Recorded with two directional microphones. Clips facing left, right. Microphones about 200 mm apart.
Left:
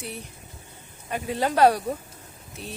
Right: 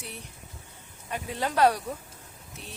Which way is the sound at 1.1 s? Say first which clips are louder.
Left 5 dB; 5° left (ahead or behind).